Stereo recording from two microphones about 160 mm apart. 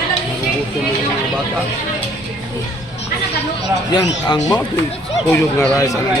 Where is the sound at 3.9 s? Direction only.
20° left (ahead or behind).